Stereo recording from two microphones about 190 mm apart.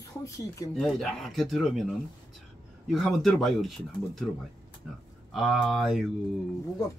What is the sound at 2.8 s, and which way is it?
Speech, centre (ahead or behind).